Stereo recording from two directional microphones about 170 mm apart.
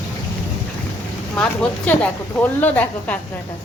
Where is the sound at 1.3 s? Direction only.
5° left (ahead or behind).